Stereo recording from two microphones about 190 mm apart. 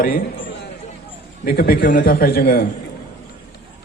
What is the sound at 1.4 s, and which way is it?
A man's voice, 50° left (ahead or behind).